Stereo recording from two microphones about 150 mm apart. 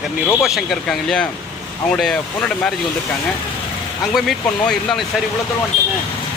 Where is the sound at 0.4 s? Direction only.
Centre (ahead or behind).